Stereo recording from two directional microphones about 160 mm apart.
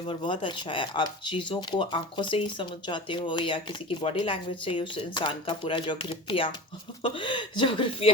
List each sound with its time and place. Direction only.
0.0 s speech: 30° left (ahead or behind)